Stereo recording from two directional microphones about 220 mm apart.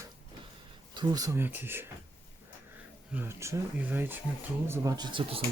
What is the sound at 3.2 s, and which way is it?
Speech, 10° right (ahead or behind).